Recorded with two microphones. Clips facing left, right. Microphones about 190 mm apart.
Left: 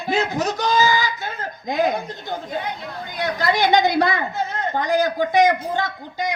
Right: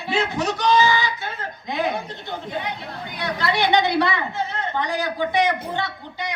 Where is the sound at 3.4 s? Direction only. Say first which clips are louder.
Left 2 dB; 40° left (ahead or behind).